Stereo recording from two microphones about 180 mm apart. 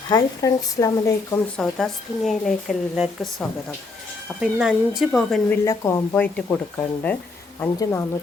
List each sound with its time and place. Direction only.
0.1 s speech: 20° left (ahead or behind)
1.5 s speech: centre (ahead or behind)
5.6 s speech: 15° left (ahead or behind)